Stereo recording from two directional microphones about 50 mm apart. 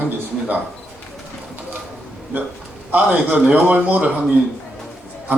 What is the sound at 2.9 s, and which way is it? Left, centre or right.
A man's voice, right.